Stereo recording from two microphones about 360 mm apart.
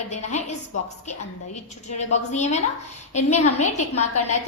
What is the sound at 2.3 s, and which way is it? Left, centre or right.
Speech, centre.